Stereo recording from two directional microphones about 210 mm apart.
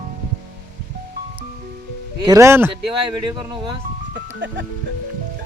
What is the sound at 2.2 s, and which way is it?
Speech, 15° right (ahead or behind).